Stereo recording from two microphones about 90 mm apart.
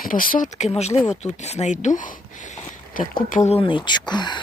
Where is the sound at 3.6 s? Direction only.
70° left (ahead or behind); by 4.3 s 55° left (ahead or behind).